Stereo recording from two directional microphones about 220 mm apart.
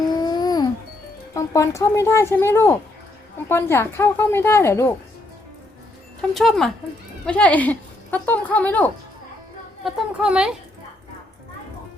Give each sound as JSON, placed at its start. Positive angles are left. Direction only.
{"t": 0.2, "sound": "music", "side_deg": 20}
{"t": 1.3, "sound": "speech", "side_deg": 15}
{"t": 6.3, "sound": "speech", "side_deg": 0}
{"t": 9.8, "sound": "speech", "side_deg": -5}